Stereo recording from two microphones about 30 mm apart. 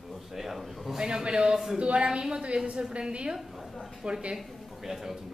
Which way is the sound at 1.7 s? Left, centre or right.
Right.